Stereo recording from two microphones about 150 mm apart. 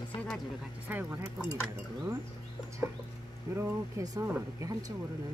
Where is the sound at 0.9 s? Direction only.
10° right (ahead or behind).